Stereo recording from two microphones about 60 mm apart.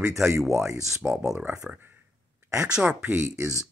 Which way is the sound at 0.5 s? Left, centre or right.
Right.